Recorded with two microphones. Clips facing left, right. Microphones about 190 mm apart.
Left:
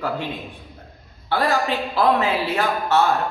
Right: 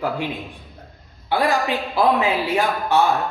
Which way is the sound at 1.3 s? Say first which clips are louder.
Right 1 dB; 15° right (ahead or behind).